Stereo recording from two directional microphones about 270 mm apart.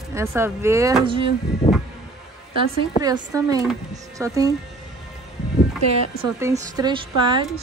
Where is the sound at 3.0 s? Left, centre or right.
Centre.